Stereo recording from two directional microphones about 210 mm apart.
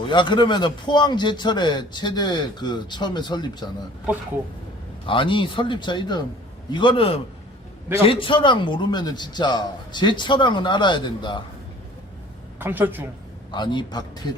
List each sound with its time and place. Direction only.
0.1 s a man's voice: 20° left (ahead or behind)
5.0 s a man's voice: 25° left (ahead or behind)
12.5 s a woman's voice: 10° right (ahead or behind)
13.5 s a man's voice: 20° left (ahead or behind)